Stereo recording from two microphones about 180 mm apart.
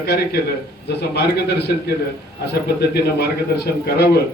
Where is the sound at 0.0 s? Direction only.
60° left (ahead or behind).